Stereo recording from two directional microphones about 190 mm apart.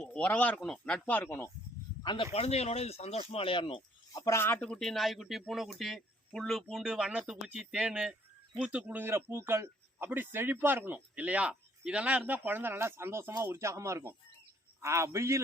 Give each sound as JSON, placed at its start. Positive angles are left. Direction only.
{"t": 0.0, "sound": "speech", "side_deg": 5}
{"t": 2.0, "sound": "speech", "side_deg": 30}
{"t": 4.2, "sound": "a man's voice", "side_deg": 15}